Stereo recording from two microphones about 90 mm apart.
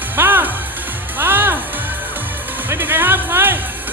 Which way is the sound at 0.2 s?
20° right (ahead or behind).